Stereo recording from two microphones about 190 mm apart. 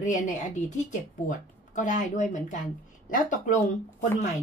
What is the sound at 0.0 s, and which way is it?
Speech, 40° left (ahead or behind).